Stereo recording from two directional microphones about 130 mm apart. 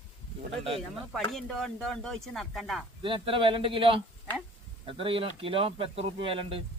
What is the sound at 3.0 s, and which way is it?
A man's voice, 40° right (ahead or behind).